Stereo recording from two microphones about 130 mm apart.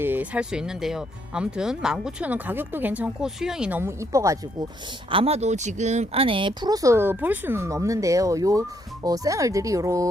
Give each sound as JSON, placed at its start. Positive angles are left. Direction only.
{"t": 0.0, "sound": "speech", "side_deg": -15}
{"t": 5.1, "sound": "speech", "side_deg": -50}